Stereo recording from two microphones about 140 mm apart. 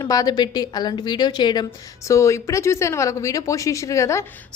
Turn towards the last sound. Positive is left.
turn(degrees=20)  # may be behind; listen again after turning